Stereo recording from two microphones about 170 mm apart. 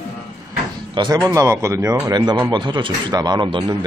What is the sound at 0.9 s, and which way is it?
Speech, 25° right (ahead or behind).